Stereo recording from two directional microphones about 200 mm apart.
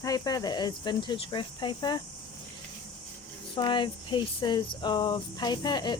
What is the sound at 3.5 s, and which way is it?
Speech, 25° left (ahead or behind).